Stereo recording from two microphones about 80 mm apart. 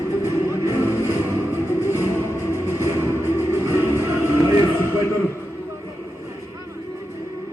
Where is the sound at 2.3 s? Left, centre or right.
Left.